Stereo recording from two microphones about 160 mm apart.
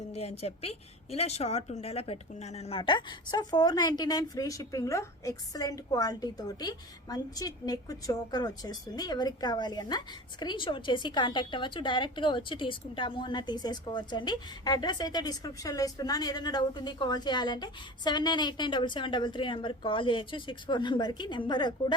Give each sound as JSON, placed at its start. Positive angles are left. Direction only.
{"t": 0.1, "sound": "a woman's voice", "side_deg": 40}